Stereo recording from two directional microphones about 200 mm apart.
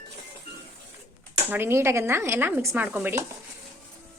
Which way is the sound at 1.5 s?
10° right (ahead or behind).